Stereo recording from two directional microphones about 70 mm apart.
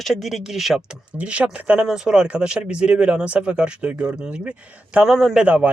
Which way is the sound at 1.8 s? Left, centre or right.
Centre.